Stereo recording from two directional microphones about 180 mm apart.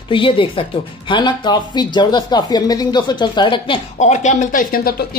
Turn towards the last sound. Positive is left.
turn(degrees=50)  # may be behind; listen again after turning